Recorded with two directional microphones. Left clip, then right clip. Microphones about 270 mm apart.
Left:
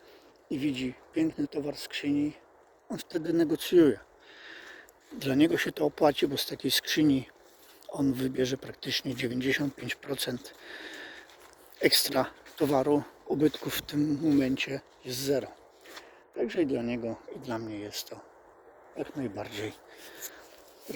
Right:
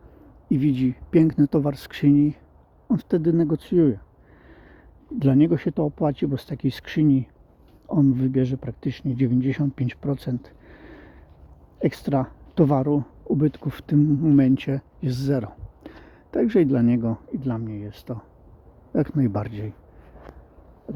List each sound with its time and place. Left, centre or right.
0.5 s speech: centre
4.4 s a sound: centre
5.2 s speech: centre
17.7 s speech: centre
19.0 s speech: right
19.4 s speech: centre